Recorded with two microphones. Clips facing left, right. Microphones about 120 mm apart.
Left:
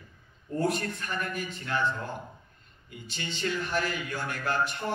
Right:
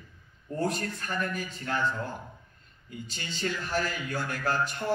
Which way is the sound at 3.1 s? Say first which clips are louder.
Left 2 dB; 40° right (ahead or behind).